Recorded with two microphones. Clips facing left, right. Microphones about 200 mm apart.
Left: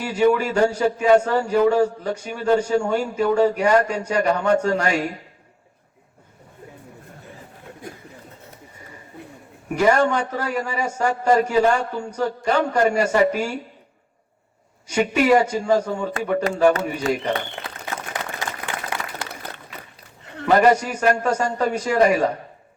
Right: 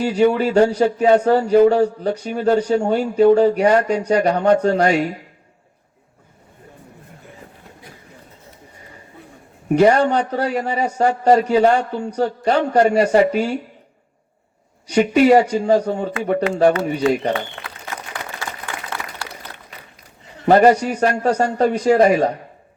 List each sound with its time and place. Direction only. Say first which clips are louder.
0.0 s speech: right 3 dB; 35° right (ahead or behind)
9.6 s speech: right 4 dB; 35° right (ahead or behind)
14.8 s speech: right 5 dB; 35° right (ahead or behind)
18.1 s applause: left 1 dB; 20° left (ahead or behind)
20.5 s speech: right 4 dB; 35° right (ahead or behind)